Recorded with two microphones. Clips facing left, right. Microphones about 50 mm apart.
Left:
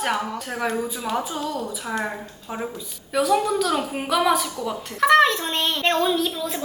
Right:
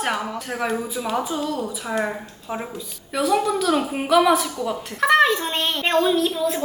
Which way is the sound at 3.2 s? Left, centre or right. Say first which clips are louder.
Even; centre.